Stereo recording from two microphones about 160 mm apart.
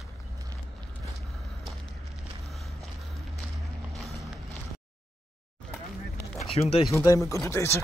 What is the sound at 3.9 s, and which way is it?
Vehicle, centre (ahead or behind).